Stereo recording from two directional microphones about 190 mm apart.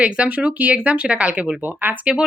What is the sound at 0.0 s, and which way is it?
A woman's voice, 5° right (ahead or behind).